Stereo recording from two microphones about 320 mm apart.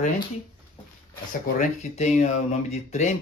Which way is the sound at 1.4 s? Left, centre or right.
Left.